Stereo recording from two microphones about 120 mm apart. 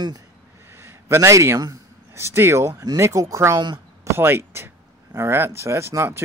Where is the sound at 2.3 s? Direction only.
20° right (ahead or behind).